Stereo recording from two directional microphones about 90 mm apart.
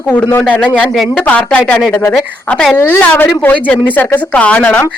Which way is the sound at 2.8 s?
25° left (ahead or behind).